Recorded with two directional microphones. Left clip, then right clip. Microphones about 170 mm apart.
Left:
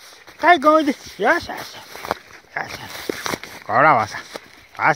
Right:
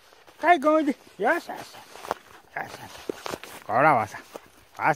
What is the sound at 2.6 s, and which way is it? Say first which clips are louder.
Speech: left 6 dB; 5° right (ahead or behind).